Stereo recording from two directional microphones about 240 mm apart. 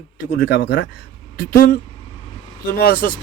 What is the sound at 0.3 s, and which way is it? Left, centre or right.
Speech, left.